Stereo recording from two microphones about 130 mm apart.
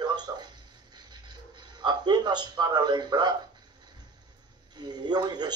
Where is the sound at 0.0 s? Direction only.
30° right (ahead or behind).